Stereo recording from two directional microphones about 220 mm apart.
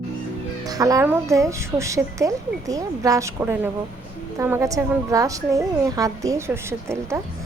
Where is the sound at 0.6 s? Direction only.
15° right (ahead or behind).